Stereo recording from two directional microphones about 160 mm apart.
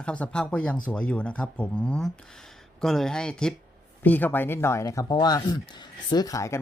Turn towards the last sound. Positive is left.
turn(degrees=20)  # may be behind; listen again after turning